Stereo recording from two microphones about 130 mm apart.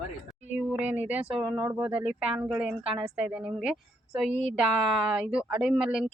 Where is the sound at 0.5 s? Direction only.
10° right (ahead or behind).